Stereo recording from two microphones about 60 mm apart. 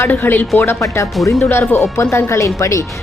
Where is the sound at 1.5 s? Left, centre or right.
Left.